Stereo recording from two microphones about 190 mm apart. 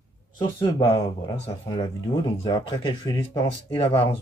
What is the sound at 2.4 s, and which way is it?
Speech, 25° left (ahead or behind).